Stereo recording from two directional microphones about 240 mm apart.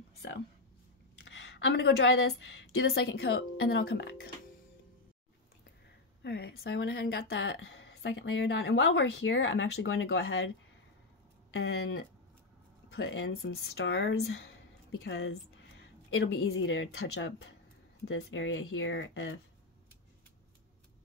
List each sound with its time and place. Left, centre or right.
0.2 s a woman's voice: left
6.2 s speech: left
11.5 s speech: left